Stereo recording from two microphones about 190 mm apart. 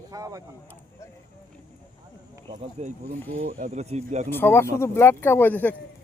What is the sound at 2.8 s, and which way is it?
Speech, 35° right (ahead or behind).